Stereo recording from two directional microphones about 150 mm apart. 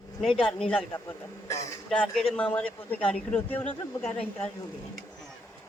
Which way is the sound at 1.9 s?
5° left (ahead or behind).